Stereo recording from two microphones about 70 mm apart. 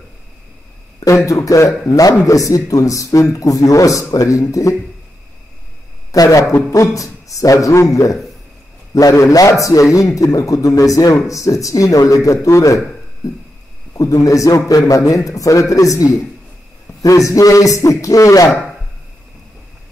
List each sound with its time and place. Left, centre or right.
1.0 s speech: left
6.1 s a man's voice: left
13.9 s a man's voice: left